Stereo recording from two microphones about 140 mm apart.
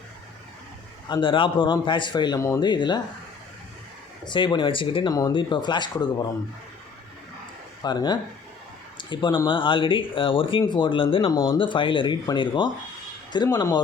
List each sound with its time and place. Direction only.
1.0 s a man's voice: 35° left (ahead or behind)
4.3 s a man's voice: 35° left (ahead or behind)
7.8 s a man's voice: 30° left (ahead or behind)